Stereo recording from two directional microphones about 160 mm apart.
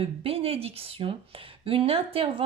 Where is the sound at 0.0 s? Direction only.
35° right (ahead or behind).